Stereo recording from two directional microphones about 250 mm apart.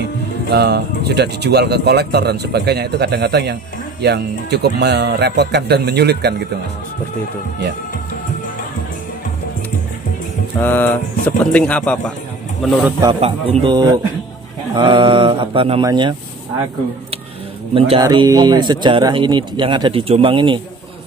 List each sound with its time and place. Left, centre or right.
0.5 s speech: right
10.6 s music: centre
11.2 s speech: centre
13.2 s speech: right
17.7 s speech: centre